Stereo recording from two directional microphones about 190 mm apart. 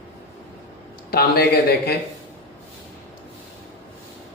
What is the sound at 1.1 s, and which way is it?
Speech, 55° left (ahead or behind).